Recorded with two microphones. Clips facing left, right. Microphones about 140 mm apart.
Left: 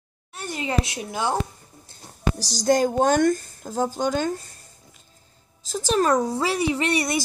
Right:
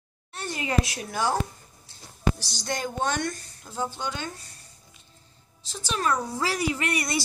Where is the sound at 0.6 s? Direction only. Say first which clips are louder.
Left 2 dB; 20° left (ahead or behind).